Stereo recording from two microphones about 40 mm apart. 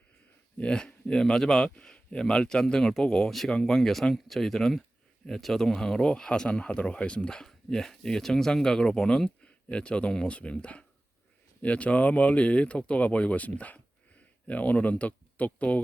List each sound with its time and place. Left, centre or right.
0.6 s speech: left
7.3 s speech: centre; by 15.8 s left